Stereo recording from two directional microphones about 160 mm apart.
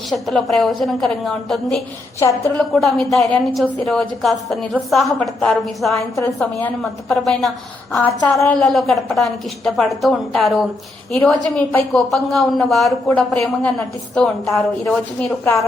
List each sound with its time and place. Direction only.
0.1 s a woman's voice: centre (ahead or behind)
2.6 s a woman's voice: centre (ahead or behind)
7.1 s a woman's voice: centre (ahead or behind)